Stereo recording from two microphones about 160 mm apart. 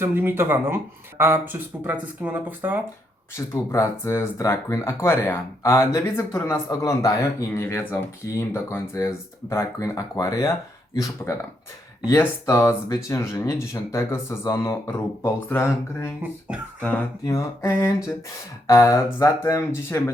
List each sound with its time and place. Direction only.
0.0 s speech: 15° right (ahead or behind)
3.3 s speech: 20° left (ahead or behind)
12.5 s speech: 15° left (ahead or behind)
16.5 s speech: 5° right (ahead or behind)
17.2 s speech: 20° left (ahead or behind)